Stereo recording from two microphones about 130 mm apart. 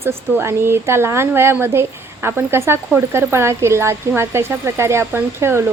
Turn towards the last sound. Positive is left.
turn(degrees=-20)  # may be behind; listen again after turning